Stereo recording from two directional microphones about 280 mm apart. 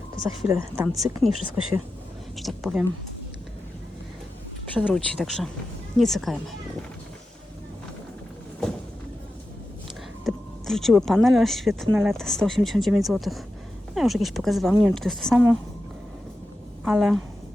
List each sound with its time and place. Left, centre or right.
0.4 s a woman's voice: centre
1.3 s speech: right
2.3 s speech: centre
4.7 s speech: centre
10.2 s speech: centre
16.8 s speech: centre